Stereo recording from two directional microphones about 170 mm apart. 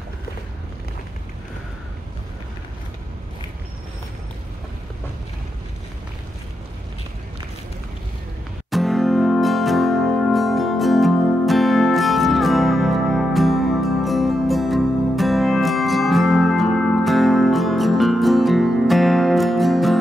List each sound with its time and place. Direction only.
8.6 s music: centre (ahead or behind)